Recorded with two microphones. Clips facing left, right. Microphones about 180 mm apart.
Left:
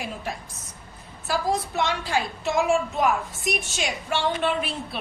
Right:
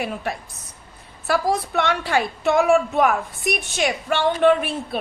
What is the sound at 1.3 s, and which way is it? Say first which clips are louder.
A woman's voice: right 4 dB; 65° right (ahead or behind).